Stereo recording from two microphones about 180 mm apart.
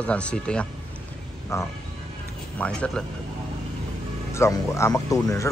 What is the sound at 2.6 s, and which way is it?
Speech, 5° left (ahead or behind).